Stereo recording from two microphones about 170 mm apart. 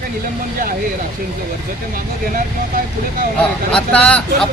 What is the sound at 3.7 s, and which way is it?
Speech, 5° left (ahead or behind).